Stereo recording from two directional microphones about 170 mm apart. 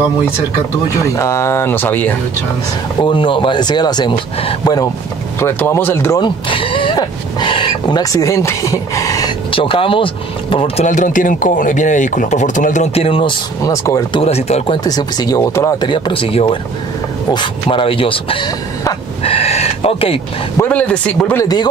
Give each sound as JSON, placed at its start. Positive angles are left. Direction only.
{"t": 1.1, "sound": "speech", "side_deg": 20}
{"t": 3.0, "sound": "speech", "side_deg": 30}
{"t": 5.4, "sound": "speech", "side_deg": 10}
{"t": 6.2, "sound": "speech", "side_deg": 30}
{"t": 9.5, "sound": "speech", "side_deg": 30}
{"t": 10.9, "sound": "speech", "side_deg": 50}
{"t": 14.2, "sound": "speech", "side_deg": 35}
{"t": 14.9, "sound": "speech", "side_deg": 25}
{"t": 15.9, "sound": "speech", "side_deg": 30}
{"t": 20.5, "sound": "speech", "side_deg": 10}
{"t": 21.4, "sound": "speech", "side_deg": 20}